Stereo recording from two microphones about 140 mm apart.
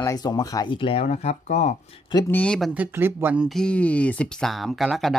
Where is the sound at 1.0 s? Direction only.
50° left (ahead or behind).